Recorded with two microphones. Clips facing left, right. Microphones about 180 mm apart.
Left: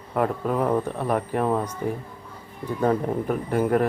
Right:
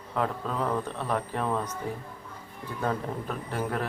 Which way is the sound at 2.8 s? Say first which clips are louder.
Left 8 dB; 15° left (ahead or behind).